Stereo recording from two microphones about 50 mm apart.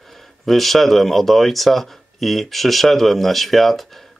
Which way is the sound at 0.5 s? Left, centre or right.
Centre.